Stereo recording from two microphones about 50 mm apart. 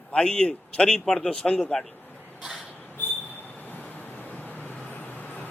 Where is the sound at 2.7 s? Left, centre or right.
Left.